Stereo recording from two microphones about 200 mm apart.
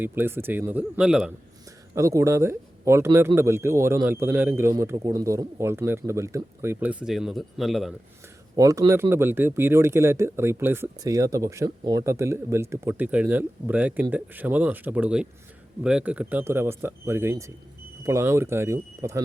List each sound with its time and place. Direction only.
0.0 s speech: 10° right (ahead or behind)
2.0 s speech: 15° right (ahead or behind)
8.5 s speech: 15° right (ahead or behind)